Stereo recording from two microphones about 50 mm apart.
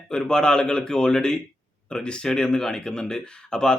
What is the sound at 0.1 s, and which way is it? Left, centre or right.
A man's voice, centre.